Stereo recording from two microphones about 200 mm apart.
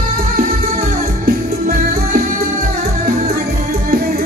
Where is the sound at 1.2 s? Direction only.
50° right (ahead or behind).